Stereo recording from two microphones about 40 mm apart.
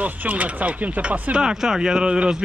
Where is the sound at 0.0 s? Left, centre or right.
Right.